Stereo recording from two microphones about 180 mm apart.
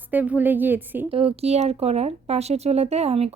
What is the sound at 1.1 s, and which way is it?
Speech, 30° right (ahead or behind).